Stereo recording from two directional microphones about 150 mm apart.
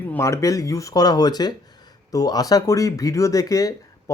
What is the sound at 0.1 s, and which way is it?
Speech, 20° left (ahead or behind).